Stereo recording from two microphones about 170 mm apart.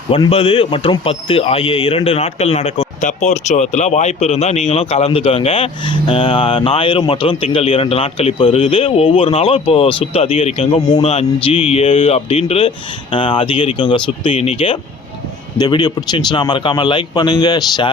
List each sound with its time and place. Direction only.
0.1 s a man's voice: 35° left (ahead or behind)